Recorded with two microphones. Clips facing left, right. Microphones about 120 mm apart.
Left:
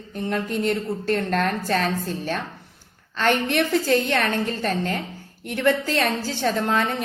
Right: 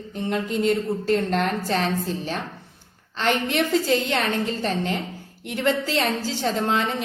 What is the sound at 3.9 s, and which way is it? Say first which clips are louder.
A woman's voice: left 1 dB; 20° right (ahead or behind).